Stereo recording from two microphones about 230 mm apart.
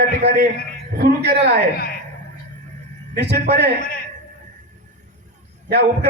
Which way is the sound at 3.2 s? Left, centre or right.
Right.